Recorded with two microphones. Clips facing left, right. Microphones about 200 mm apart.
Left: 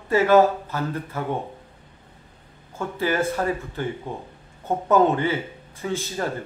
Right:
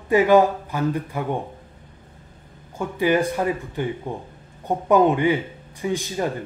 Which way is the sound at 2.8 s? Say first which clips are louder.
Right 4 dB; 15° right (ahead or behind).